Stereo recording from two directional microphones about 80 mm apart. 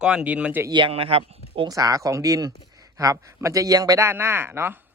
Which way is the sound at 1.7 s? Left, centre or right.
Right.